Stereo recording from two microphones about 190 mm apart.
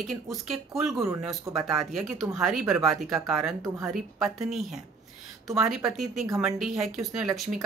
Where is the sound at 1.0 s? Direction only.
20° right (ahead or behind).